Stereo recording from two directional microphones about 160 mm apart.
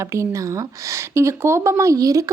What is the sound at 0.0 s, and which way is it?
Speech, 15° right (ahead or behind).